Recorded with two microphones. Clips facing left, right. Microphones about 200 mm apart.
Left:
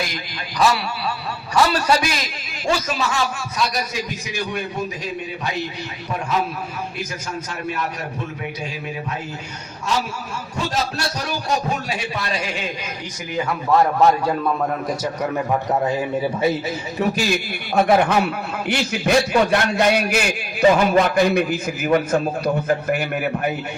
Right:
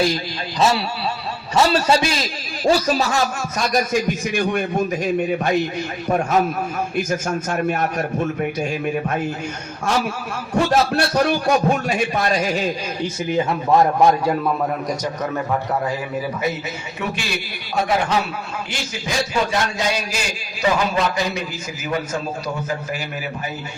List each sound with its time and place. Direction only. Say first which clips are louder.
0.6 s a man's voice: right 1 dB; 25° right (ahead or behind); by 4.8 s 55° right (ahead or behind)
6.1 s a man's voice: right 5 dB; 50° right (ahead or behind)
10.5 s a man's voice: right 8 dB; 55° right (ahead or behind)
13.3 s a man's voice: right 2 dB; 25° right (ahead or behind)
13.7 s a man's voice: right 1 dB; 10° right (ahead or behind)
17.8 s a man's voice: left 3 dB; 55° left (ahead or behind)